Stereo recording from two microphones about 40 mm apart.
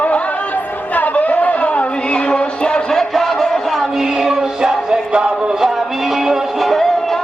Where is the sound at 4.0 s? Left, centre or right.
Centre.